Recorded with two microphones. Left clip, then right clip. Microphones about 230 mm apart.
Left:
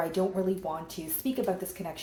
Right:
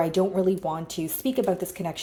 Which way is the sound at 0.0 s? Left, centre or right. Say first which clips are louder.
Right 6 dB; right.